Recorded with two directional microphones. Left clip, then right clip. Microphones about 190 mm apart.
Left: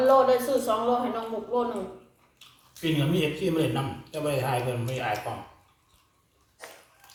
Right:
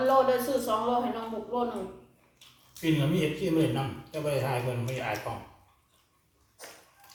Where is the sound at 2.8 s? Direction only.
20° left (ahead or behind).